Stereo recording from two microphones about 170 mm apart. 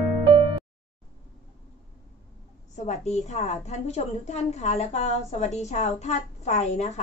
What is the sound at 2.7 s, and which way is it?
A woman's voice, 45° left (ahead or behind).